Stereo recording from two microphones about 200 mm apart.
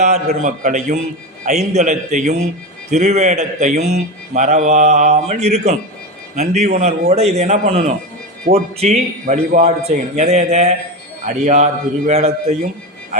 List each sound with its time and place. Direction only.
0.0 s speech: 35° right (ahead or behind)